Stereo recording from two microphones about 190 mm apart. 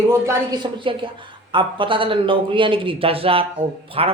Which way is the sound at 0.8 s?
25° right (ahead or behind).